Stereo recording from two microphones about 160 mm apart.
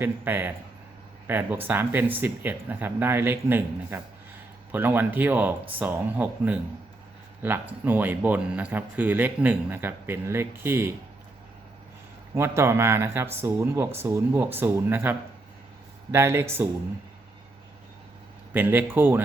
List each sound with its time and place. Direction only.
0.0 s speech: 10° right (ahead or behind)
12.3 s speech: 15° right (ahead or behind)
16.1 s speech: 15° right (ahead or behind)
18.5 s speech: 10° right (ahead or behind)